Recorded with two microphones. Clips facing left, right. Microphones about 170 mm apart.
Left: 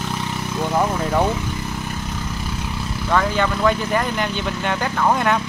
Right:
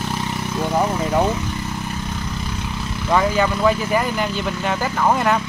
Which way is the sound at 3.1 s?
10° right (ahead or behind).